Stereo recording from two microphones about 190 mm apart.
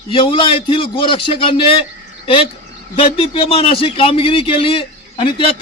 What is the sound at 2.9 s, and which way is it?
A man's voice, 30° left (ahead or behind).